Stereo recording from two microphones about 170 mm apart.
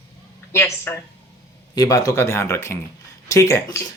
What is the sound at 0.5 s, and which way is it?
Speech, 15° left (ahead or behind).